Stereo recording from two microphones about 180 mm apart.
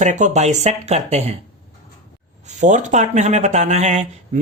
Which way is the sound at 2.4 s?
40° right (ahead or behind).